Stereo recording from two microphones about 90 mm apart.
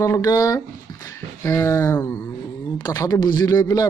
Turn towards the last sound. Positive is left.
turn(degrees=40)  # may be behind; listen again after turning